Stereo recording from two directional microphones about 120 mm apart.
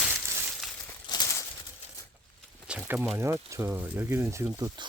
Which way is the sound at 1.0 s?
30° left (ahead or behind).